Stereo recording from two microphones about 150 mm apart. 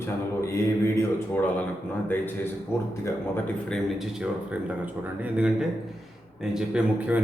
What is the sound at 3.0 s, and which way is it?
Speech, 10° left (ahead or behind).